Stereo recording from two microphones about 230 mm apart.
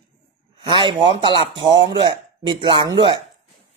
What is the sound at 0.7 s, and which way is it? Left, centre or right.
Speech, centre.